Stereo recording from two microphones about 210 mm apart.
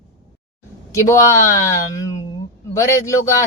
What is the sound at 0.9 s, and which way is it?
Speech, 15° left (ahead or behind).